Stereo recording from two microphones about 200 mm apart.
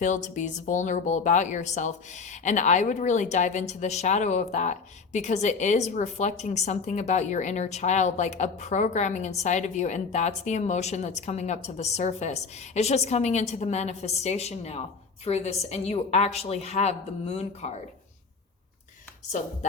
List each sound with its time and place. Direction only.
0.0 s a woman's voice: 40° left (ahead or behind)